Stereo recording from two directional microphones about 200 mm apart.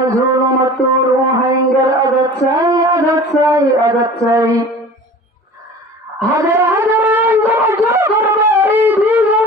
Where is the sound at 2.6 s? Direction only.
15° right (ahead or behind).